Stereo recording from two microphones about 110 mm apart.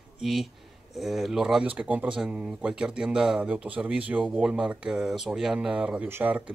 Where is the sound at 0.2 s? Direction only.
Centre (ahead or behind).